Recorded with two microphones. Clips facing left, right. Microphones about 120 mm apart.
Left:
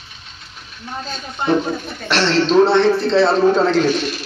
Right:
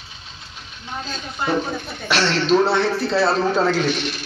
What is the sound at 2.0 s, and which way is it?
A man's voice, 5° right (ahead or behind).